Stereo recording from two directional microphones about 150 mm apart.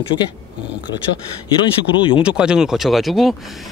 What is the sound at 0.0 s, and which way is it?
Speech, 30° left (ahead or behind).